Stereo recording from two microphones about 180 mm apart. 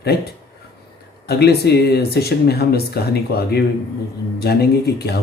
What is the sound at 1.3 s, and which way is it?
Speech, 65° left (ahead or behind).